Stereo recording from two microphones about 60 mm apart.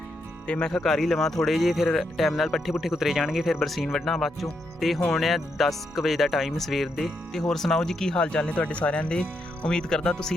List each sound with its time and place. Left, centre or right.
0.4 s speech: centre
0.8 s speech: centre